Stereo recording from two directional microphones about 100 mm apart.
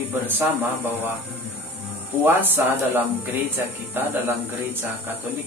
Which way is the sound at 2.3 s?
20° right (ahead or behind).